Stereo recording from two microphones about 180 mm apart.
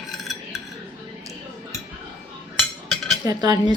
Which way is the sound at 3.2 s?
20° right (ahead or behind).